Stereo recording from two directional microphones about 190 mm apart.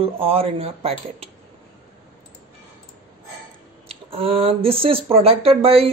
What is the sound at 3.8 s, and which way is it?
Speech, 30° right (ahead or behind).